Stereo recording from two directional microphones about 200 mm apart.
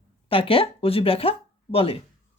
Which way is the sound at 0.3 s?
25° left (ahead or behind).